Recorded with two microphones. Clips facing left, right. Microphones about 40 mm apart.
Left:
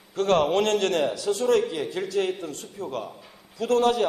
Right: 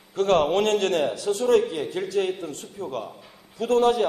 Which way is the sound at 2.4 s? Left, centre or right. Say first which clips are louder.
Right 1 dB; right.